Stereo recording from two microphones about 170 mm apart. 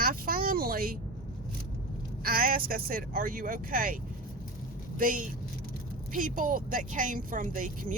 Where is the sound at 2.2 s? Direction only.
60° right (ahead or behind).